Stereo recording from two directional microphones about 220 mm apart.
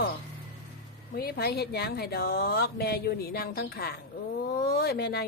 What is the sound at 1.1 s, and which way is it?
Speech, 45° left (ahead or behind).